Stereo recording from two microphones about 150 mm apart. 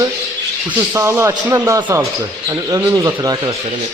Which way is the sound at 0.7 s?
15° right (ahead or behind).